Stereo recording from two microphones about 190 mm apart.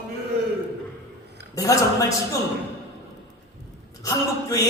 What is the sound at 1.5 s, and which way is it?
Speech, 15° left (ahead or behind).